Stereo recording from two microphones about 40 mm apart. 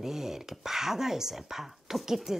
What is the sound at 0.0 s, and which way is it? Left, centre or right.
Speech, centre.